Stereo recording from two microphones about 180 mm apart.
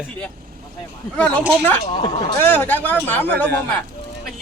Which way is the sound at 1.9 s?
25° left (ahead or behind).